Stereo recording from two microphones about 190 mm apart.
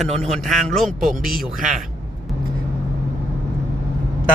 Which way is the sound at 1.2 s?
50° right (ahead or behind).